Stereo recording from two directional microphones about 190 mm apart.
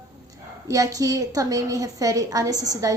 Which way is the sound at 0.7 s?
15° right (ahead or behind).